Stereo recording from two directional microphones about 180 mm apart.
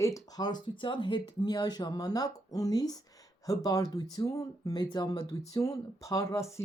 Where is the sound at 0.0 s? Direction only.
20° left (ahead or behind).